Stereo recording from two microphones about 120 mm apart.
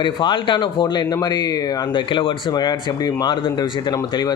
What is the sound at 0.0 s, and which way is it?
Speech, 40° left (ahead or behind).